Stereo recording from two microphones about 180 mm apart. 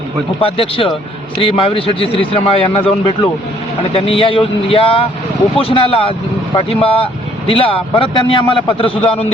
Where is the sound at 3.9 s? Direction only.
30° left (ahead or behind).